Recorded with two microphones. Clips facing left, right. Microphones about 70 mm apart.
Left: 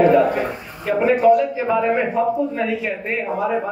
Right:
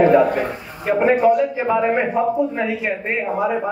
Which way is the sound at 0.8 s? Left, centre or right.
Centre.